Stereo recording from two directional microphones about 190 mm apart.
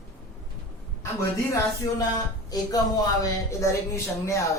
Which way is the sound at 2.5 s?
20° left (ahead or behind).